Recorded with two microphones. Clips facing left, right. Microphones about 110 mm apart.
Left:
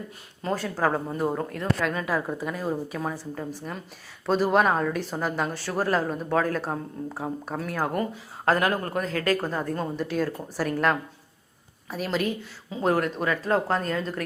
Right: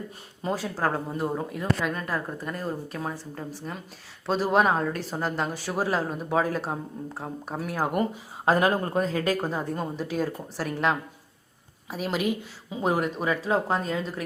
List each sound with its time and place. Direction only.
0.4 s speech: 5° right (ahead or behind)
7.5 s speech: 10° right (ahead or behind)
8.4 s speech: 20° right (ahead or behind)
9.5 s speech: 5° right (ahead or behind)